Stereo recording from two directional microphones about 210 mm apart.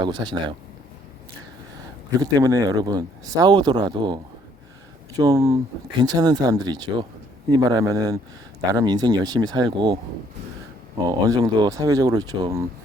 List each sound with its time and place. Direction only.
0.0 s speech: 20° right (ahead or behind)
2.0 s speech: 20° right (ahead or behind)
11.3 s speech: 20° right (ahead or behind)